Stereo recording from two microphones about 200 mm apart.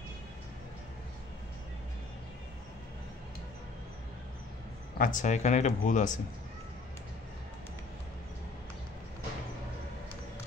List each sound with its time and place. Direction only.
4.9 s speech: 40° left (ahead or behind)